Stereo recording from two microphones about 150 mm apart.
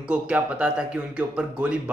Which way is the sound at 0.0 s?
10° right (ahead or behind).